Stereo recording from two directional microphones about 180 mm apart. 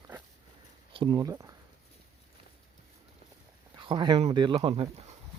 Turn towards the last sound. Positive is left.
turn(degrees=-30)  # may be behind; listen again after turning